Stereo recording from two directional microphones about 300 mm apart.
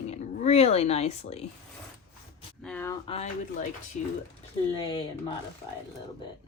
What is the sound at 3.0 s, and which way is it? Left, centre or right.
Speech, centre.